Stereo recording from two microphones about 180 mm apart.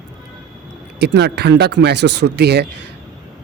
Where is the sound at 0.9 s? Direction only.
70° right (ahead or behind).